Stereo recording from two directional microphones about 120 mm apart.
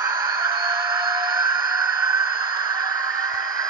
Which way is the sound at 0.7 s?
40° right (ahead or behind).